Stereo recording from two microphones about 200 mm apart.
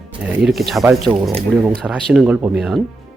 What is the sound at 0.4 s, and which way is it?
Speech, centre (ahead or behind).